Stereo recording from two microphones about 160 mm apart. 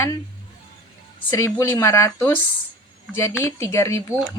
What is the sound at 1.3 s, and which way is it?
A woman's voice, 20° left (ahead or behind).